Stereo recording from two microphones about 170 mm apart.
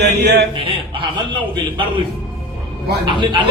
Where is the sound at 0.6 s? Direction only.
30° right (ahead or behind).